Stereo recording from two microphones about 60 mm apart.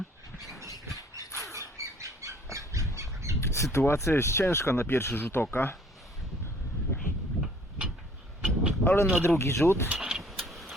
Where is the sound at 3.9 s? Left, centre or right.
Left.